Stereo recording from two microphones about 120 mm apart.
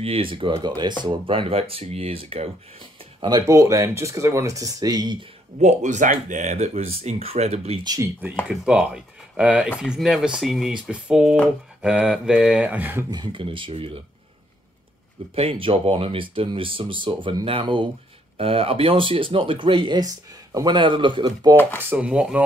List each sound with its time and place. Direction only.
0.0 s speech: 50° right (ahead or behind)
5.6 s speech: 80° right; by 7.8 s 60° right (ahead or behind)
7.8 s speech: 30° right (ahead or behind)
8.5 s speech: 5° right (ahead or behind)
13.1 s speech: 40° right (ahead or behind)
15.3 s speech: 50° right (ahead or behind); by 21.5 s 35° right (ahead or behind)
21.5 s speech: 15° left (ahead or behind)
21.8 s speech: 10° right (ahead or behind)